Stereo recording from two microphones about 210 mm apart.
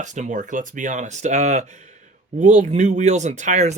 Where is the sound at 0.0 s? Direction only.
35° right (ahead or behind).